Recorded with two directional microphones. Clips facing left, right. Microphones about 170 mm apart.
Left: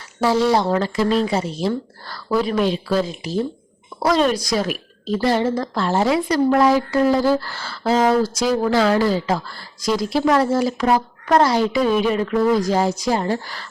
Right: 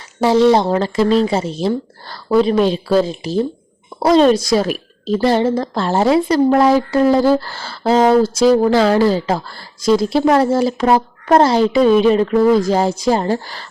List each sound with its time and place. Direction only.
0.2 s a woman's voice: 20° right (ahead or behind)